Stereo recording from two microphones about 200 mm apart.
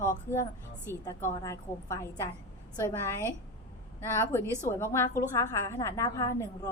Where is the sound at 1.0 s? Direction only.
20° left (ahead or behind).